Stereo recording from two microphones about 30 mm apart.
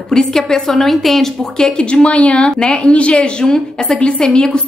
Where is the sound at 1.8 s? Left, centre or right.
Left.